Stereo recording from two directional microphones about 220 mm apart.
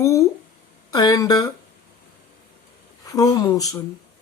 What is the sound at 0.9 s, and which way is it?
Speech, 15° left (ahead or behind).